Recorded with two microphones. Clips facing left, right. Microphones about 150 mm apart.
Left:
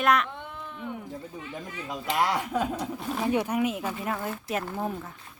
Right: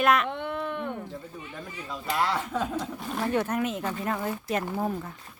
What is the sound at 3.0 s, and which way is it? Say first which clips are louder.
Speech: left 1 dB; centre (ahead or behind).